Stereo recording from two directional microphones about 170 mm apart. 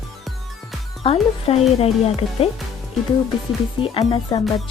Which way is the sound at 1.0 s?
35° left (ahead or behind).